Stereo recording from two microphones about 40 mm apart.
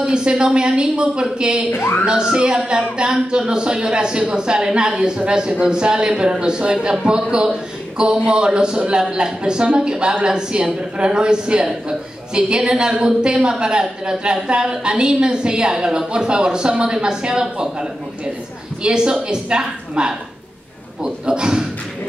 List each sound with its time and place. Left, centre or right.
0.0 s a woman's voice: right